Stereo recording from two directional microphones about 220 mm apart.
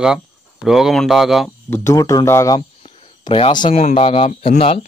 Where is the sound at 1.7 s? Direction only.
15° left (ahead or behind).